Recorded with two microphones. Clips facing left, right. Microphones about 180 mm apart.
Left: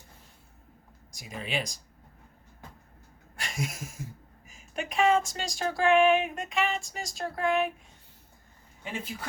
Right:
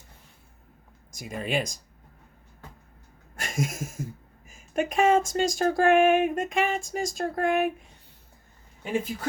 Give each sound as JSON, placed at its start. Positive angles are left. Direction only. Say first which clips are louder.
{"t": 1.1, "sound": "speech", "louder": "right 5 dB", "side_deg": -50}
{"t": 3.3, "sound": "a sound", "louder": "right 5 dB", "side_deg": -50}
{"t": 4.4, "sound": "speech", "louder": "right 8 dB", "side_deg": -50}